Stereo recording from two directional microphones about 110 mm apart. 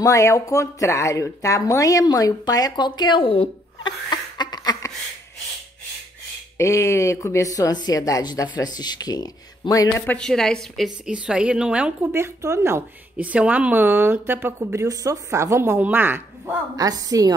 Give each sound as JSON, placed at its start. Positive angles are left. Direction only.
{"t": 0.0, "sound": "speech", "side_deg": 30}
{"t": 6.6, "sound": "speech", "side_deg": 25}
{"t": 10.1, "sound": "a woman's voice", "side_deg": 5}
{"t": 11.1, "sound": "a woman's voice", "side_deg": -10}
{"t": 12.1, "sound": "speech", "side_deg": -25}
{"t": 13.2, "sound": "speech", "side_deg": -15}
{"t": 16.7, "sound": "a woman's voice", "side_deg": -35}